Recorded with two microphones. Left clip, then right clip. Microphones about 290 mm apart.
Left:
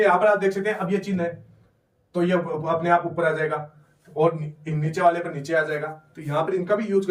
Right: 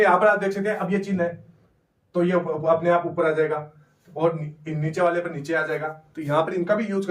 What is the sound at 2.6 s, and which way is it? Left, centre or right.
Speech, centre.